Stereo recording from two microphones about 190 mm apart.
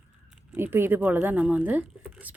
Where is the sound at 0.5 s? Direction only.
10° right (ahead or behind).